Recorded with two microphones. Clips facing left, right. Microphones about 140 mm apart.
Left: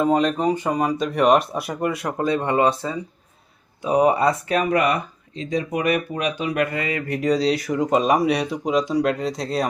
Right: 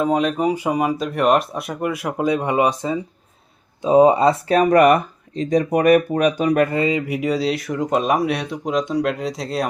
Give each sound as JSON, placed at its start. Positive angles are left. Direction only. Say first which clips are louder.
{"t": 0.0, "sound": "speech", "louder": "even", "side_deg": -5}
{"t": 3.8, "sound": "speech", "louder": "right 5 dB", "side_deg": -25}
{"t": 7.0, "sound": "speech", "louder": "even", "side_deg": -5}